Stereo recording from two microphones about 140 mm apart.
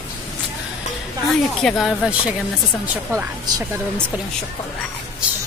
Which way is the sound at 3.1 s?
20° right (ahead or behind).